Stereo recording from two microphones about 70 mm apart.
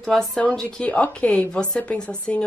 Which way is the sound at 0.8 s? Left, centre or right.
Left.